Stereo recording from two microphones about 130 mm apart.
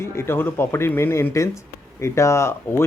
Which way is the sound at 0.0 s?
20° left (ahead or behind).